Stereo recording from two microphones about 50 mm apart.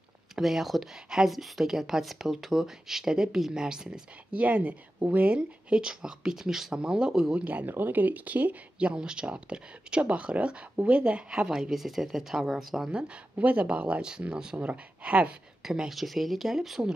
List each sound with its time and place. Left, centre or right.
0.4 s speech: centre
4.3 s speech: right
5.3 s speech: centre
7.3 s speech: right
8.7 s speech: centre
13.1 s speech: right
15.6 s speech: centre
15.9 s speech: centre